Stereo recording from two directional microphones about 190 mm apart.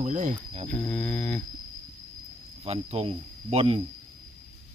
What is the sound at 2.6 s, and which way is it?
Speech, 30° right (ahead or behind).